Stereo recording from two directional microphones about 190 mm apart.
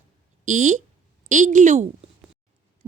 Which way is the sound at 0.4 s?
40° right (ahead or behind).